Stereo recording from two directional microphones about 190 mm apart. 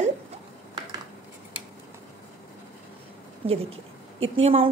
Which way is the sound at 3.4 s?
30° right (ahead or behind).